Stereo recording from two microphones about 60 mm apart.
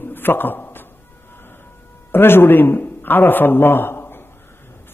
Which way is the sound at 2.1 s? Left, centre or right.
Left.